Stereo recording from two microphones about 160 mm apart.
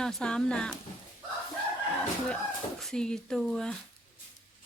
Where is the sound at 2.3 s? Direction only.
Centre (ahead or behind).